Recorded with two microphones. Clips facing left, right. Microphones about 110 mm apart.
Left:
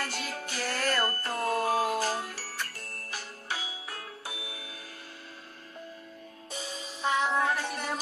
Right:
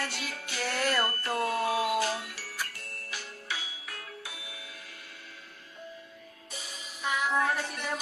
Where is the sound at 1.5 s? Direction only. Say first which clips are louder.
Left 3 dB; 40° left (ahead or behind).